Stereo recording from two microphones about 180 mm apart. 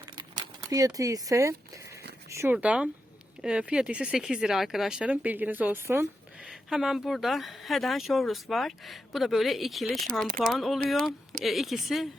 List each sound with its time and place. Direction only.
0.2 s speech: 20° right (ahead or behind); by 12.0 s centre (ahead or behind)